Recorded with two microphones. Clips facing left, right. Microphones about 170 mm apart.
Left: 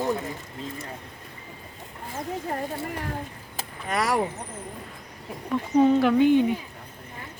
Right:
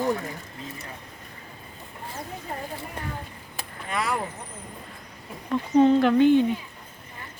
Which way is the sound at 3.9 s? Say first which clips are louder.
Left 3 dB; 40° left (ahead or behind).